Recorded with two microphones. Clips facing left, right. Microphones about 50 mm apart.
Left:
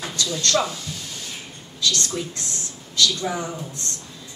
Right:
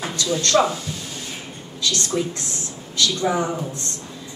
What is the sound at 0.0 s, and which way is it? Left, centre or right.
Speech, right.